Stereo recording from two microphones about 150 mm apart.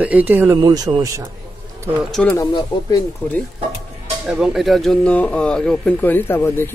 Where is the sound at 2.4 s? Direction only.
25° left (ahead or behind).